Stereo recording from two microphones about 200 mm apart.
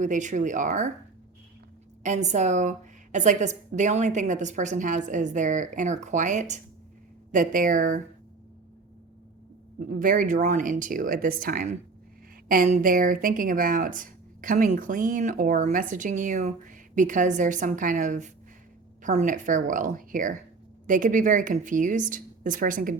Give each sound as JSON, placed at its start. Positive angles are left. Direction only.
{"t": 0.0, "sound": "speech", "side_deg": -40}
{"t": 2.0, "sound": "speech", "side_deg": -35}
{"t": 10.0, "sound": "speech", "side_deg": -40}